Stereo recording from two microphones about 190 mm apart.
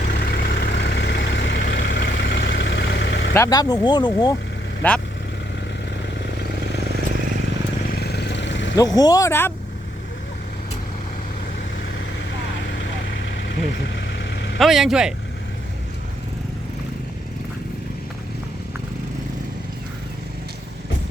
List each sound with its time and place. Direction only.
0.1 s vehicle: 60° left (ahead or behind)
3.3 s speech: 15° left (ahead or behind)
4.8 s speech: 10° left (ahead or behind)
7.9 s vehicle: 55° left (ahead or behind)
8.7 s speech: 20° left (ahead or behind)
13.9 s vehicle: 65° left (ahead or behind)
14.6 s speech: centre (ahead or behind)